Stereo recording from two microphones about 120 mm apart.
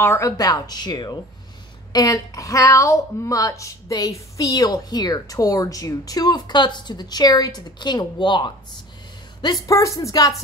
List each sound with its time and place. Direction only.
0.0 s a woman's voice: 25° left (ahead or behind); by 8.5 s 40° left (ahead or behind)
9.4 s a woman's voice: 30° left (ahead or behind)